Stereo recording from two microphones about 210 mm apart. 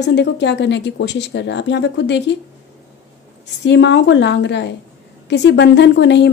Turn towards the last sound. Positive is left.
turn(degrees=55)  # may be behind; listen again after turning